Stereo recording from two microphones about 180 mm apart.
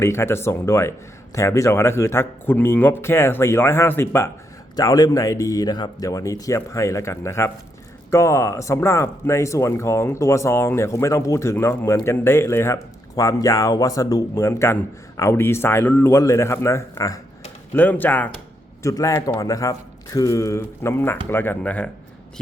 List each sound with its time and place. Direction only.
0.0 s speech: 15° left (ahead or behind)